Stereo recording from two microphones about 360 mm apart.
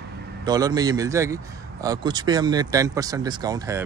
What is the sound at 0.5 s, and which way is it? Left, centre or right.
A man's voice, centre.